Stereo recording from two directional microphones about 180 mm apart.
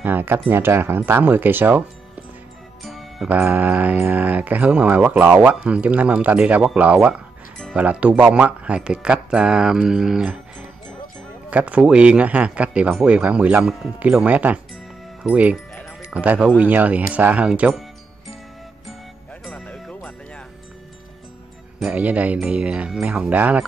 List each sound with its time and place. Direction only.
0.0 s speech: 10° right (ahead or behind)
2.8 s speech: centre (ahead or behind)
11.5 s speech: 5° right (ahead or behind)
19.4 s music: 5° left (ahead or behind)
21.7 s speech: 5° right (ahead or behind)